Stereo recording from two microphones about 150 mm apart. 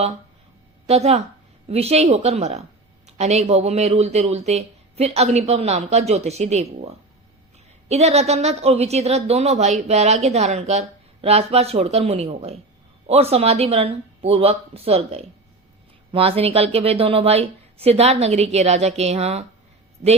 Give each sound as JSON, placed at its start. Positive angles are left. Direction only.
{"t": 0.9, "sound": "a woman's voice", "side_deg": -45}